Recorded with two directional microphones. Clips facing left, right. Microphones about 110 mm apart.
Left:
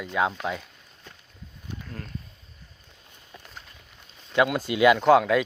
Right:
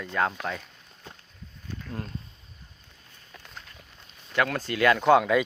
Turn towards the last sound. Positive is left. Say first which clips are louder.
# left 1 dB
turn(degrees=0)  # may be behind; listen again after turning